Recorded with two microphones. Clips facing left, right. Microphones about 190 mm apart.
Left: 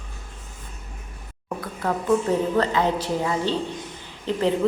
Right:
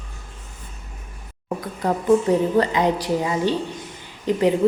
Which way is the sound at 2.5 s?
15° right (ahead or behind).